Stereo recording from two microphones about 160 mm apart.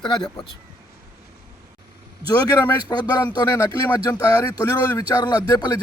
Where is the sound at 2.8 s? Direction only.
25° left (ahead or behind).